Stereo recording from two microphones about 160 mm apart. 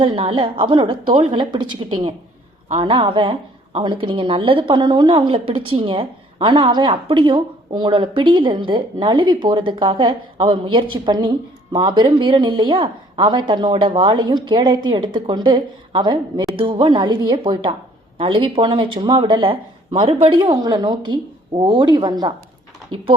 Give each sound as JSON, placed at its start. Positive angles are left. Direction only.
{"t": 0.0, "sound": "a woman's voice", "side_deg": -35}